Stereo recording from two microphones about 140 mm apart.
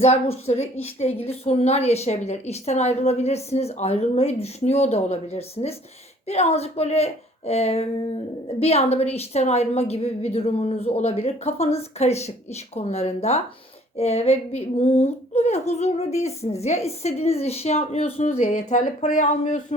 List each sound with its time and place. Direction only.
0.0 s a woman's voice: 45° left (ahead or behind)